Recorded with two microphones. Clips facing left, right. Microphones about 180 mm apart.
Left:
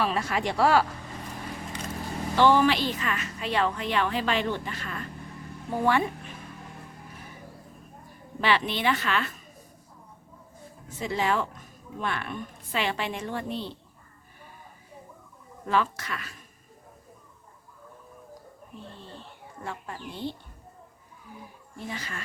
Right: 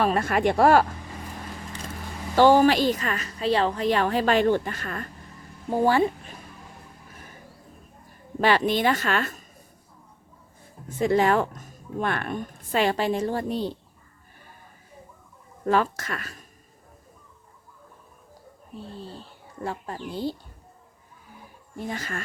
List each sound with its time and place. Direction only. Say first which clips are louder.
0.0 s speech: right 5 dB; 50° right (ahead or behind)
2.3 s a woman's voice: right 4 dB; 40° right (ahead or behind)
5.7 s a woman's voice: right 4 dB; 30° right (ahead or behind)
8.4 s speech: right 5 dB; 45° right (ahead or behind)
10.8 s speech: right 7 dB; 50° right (ahead or behind)
15.6 s speech: right 4 dB; 45° right (ahead or behind)
18.7 s speech: right 6 dB; 35° right (ahead or behind)
21.8 s speech: right 5 dB; 50° right (ahead or behind)